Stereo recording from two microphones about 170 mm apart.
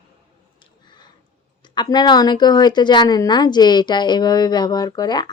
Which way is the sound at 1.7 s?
25° left (ahead or behind).